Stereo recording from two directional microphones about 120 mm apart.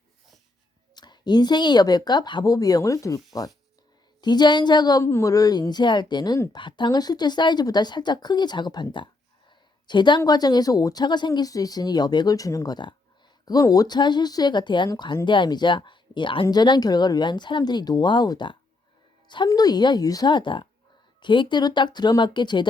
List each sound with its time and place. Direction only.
0.9 s a woman's voice: 35° left (ahead or behind)
4.2 s a woman's voice: 35° left (ahead or behind)